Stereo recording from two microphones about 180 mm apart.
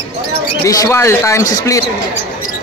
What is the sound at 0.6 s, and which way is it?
Speech, 15° left (ahead or behind).